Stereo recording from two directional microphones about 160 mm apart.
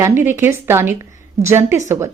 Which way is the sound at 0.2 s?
15° right (ahead or behind).